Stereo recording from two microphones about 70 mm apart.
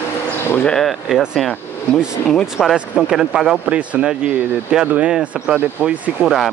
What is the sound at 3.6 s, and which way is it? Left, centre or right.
Speech, centre.